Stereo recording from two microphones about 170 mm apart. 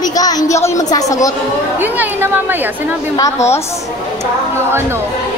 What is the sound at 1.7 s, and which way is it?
Speech, 10° right (ahead or behind).